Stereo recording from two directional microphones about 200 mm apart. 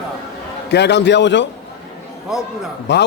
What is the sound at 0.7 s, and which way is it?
Speech, 60° left (ahead or behind).